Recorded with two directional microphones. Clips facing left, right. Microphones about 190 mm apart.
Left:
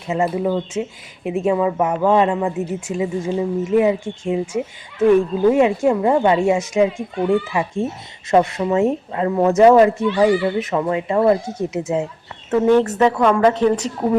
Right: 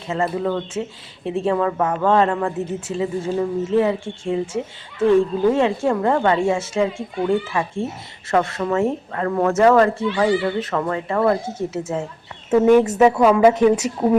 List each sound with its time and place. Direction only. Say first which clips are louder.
0.1 s speech: left 2 dB; 10° left (ahead or behind)
8.3 s speech: left 3 dB; 15° left (ahead or behind)
12.5 s speech: right 1 dB; 10° right (ahead or behind)